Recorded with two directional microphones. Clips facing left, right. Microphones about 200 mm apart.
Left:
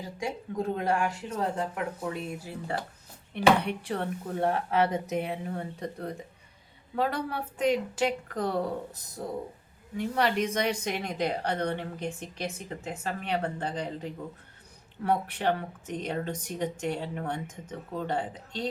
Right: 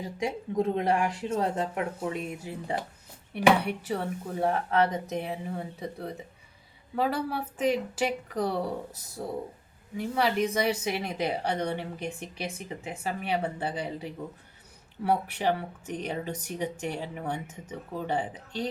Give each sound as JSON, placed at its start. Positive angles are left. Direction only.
{"t": 0.2, "sound": "a woman's voice", "side_deg": -20}